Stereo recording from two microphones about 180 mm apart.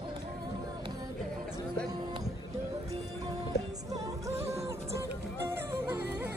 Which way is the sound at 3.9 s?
15° right (ahead or behind).